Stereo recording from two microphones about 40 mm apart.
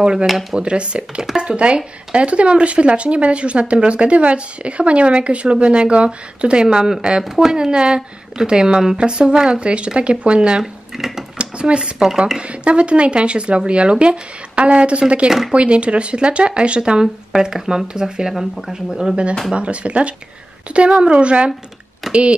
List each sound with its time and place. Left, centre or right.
0.0 s speech: right
0.3 s speech: centre
0.6 s speech: right
10.6 s a sound: centre
11.3 s speech: right
17.3 s speech: centre
19.5 s speech: right